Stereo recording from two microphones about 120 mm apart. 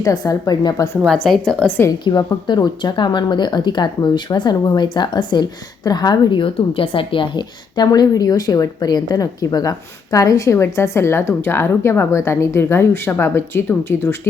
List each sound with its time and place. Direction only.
0.0 s speech: 30° left (ahead or behind)
1.0 s a woman's voice: 5° left (ahead or behind)
2.0 s speech: 35° left (ahead or behind); by 14.2 s 20° left (ahead or behind)